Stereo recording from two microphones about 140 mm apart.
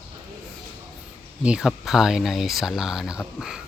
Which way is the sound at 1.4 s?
5° right (ahead or behind).